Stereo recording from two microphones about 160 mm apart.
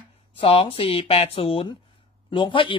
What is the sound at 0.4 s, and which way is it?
A man's voice, 35° left (ahead or behind).